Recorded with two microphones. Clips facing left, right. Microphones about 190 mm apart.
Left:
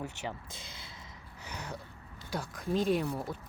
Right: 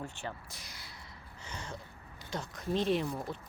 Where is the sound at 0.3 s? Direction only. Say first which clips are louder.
Left 2 dB; 25° left (ahead or behind).